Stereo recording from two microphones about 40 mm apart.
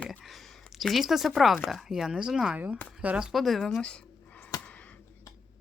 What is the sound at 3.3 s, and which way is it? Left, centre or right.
Speech, centre.